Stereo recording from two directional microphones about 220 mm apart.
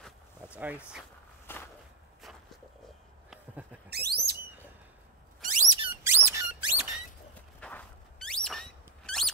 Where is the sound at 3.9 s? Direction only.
45° right (ahead or behind).